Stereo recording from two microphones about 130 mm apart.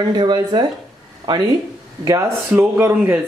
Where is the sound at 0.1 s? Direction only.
35° right (ahead or behind).